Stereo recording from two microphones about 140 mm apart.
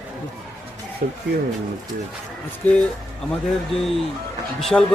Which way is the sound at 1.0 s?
90° right.